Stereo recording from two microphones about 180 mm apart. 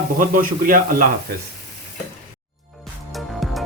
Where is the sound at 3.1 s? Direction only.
Centre (ahead or behind).